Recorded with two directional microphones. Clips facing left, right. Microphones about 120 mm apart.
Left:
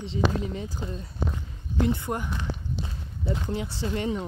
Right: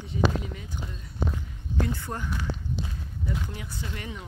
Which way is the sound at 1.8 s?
20° left (ahead or behind).